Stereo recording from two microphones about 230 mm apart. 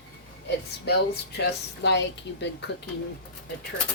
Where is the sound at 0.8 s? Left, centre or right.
Left.